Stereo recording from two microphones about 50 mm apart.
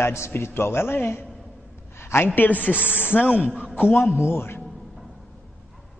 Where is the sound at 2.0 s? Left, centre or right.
Left.